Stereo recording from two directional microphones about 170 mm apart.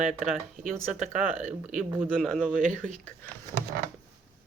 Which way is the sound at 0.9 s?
45° right (ahead or behind).